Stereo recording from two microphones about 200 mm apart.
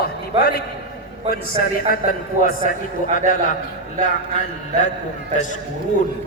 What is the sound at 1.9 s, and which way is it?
A man's voice, 45° left (ahead or behind).